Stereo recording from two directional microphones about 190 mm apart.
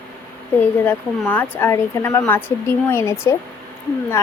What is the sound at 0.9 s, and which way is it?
A woman's voice, 10° left (ahead or behind).